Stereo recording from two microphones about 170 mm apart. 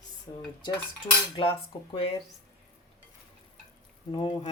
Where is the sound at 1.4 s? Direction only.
30° left (ahead or behind).